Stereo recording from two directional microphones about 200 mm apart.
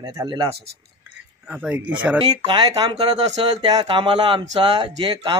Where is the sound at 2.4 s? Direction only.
25° right (ahead or behind).